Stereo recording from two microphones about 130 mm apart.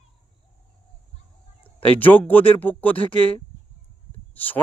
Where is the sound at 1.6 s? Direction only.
15° left (ahead or behind).